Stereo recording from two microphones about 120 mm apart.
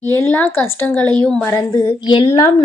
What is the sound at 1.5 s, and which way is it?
Speech, 30° left (ahead or behind).